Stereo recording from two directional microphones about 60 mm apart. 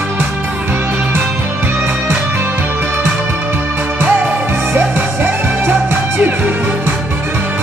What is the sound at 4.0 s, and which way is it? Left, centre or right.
Music, right.